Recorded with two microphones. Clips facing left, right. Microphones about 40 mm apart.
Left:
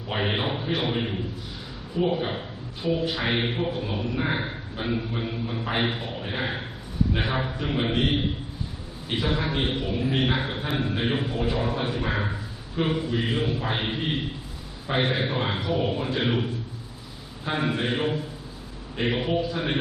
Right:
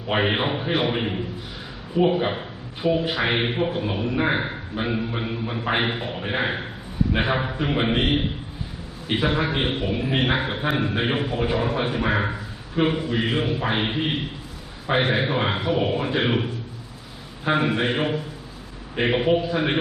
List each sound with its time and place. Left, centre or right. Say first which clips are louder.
0.1 s a man's voice: right 5 dB; right